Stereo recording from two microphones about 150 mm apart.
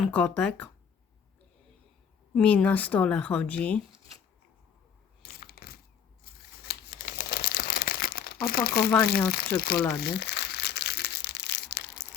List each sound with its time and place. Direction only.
0.0 s speech: 10° left (ahead or behind)
2.3 s speech: 10° left (ahead or behind)
5.2 s crushing: 90° left
6.3 s scissors: 80° left
6.7 s crumpling: 90° left
9.0 s speech: 90° left
10.0 s crumpling: 90° left